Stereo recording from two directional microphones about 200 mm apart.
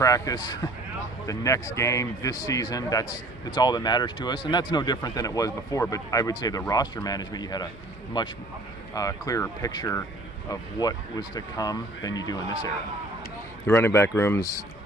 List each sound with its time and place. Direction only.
0.0 s a man's voice: 15° left (ahead or behind)
13.7 s a man's voice: 10° left (ahead or behind)